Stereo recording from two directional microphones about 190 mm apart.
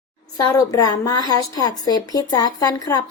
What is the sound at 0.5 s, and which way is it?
A woman's voice, 20° left (ahead or behind).